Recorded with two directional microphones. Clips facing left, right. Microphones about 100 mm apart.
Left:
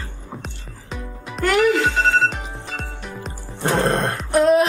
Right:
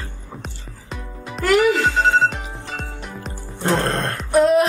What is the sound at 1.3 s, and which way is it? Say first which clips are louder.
Music: right 1 dB; centre (ahead or behind).